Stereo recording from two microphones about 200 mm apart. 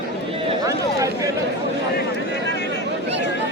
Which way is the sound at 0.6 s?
15° right (ahead or behind).